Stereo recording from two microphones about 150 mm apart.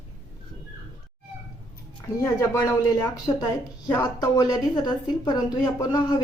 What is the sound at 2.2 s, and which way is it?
A woman's voice, 25° left (ahead or behind).